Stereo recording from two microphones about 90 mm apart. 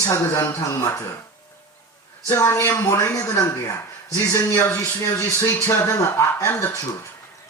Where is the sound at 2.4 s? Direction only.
25° left (ahead or behind).